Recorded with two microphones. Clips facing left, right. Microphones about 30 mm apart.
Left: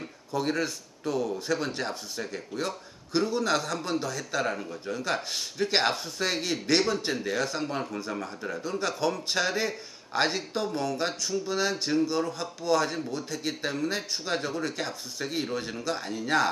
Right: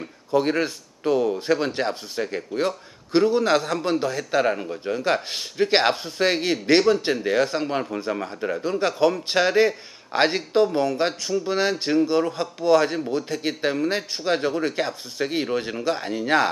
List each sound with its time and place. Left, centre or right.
0.3 s speech: right